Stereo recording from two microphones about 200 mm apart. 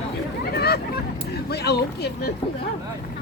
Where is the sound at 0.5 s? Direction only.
55° left (ahead or behind).